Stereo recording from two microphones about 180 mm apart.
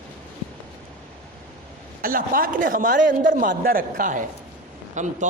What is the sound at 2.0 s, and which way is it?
Speech, 50° right (ahead or behind).